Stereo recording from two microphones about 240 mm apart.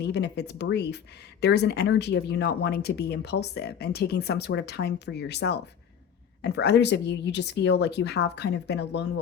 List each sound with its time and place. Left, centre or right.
0.0 s speech: left